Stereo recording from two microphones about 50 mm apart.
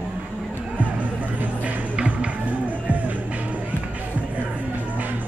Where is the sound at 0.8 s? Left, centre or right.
Right.